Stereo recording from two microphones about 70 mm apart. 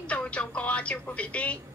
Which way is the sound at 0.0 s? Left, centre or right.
Centre.